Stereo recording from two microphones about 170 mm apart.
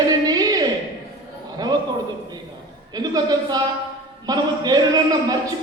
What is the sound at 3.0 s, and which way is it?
A man's voice, 20° right (ahead or behind).